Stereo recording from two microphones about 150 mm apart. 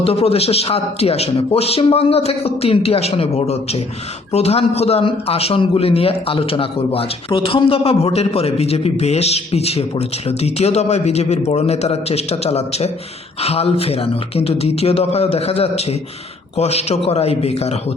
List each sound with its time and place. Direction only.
0.0 s a man's voice: 40° left (ahead or behind)